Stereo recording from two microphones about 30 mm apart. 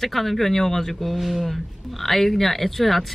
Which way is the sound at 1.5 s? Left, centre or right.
Centre.